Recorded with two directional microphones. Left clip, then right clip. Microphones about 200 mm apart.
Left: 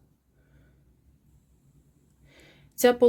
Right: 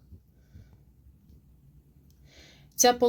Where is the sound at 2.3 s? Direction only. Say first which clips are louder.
Right 1 dB; 10° left (ahead or behind).